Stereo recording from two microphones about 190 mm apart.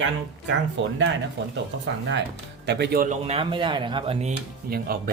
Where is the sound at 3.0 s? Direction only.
35° right (ahead or behind).